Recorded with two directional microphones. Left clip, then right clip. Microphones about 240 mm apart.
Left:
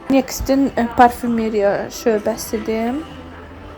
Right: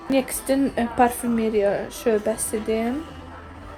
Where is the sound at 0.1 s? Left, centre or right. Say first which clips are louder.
Left 5 dB; centre.